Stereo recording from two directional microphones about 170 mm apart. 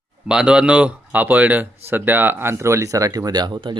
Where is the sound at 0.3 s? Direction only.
5° right (ahead or behind).